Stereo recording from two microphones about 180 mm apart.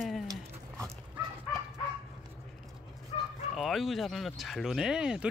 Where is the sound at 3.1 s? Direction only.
35° left (ahead or behind).